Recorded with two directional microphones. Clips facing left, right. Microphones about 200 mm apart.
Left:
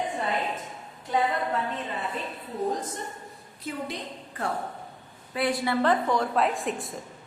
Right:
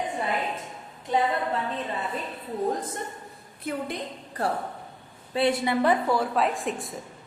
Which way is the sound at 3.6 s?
55° right (ahead or behind).